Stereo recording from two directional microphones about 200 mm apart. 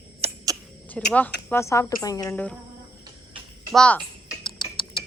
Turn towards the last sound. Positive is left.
turn(degrees=25)  # may be behind; listen again after turning